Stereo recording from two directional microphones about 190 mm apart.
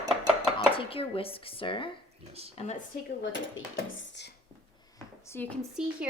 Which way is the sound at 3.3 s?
80° left.